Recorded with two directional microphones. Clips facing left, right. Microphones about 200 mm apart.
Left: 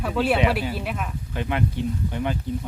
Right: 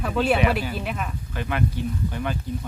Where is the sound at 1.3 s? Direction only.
20° left (ahead or behind).